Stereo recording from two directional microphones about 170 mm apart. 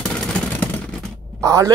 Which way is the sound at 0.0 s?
5° left (ahead or behind).